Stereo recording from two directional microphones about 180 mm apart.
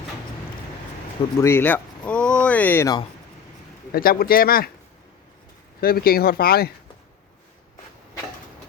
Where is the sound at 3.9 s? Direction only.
55° left (ahead or behind).